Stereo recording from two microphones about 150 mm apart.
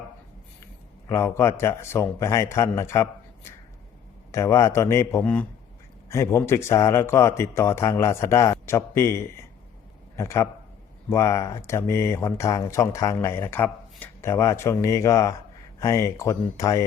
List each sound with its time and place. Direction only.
1.0 s speech: 20° left (ahead or behind)
4.3 s a man's voice: 20° left (ahead or behind)